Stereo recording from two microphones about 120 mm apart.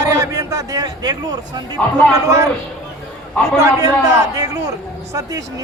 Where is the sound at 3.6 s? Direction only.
25° right (ahead or behind).